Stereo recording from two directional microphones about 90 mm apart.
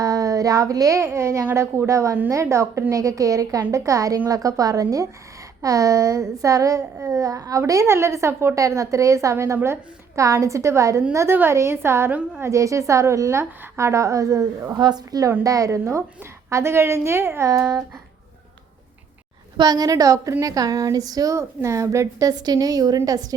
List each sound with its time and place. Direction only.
0.0 s a woman's voice: 40° right (ahead or behind)
14.8 s a woman's voice: 50° right (ahead or behind); by 17.5 s 30° right (ahead or behind)
17.5 s a woman's voice: 45° right (ahead or behind)
19.5 s a woman's voice: 50° right (ahead or behind)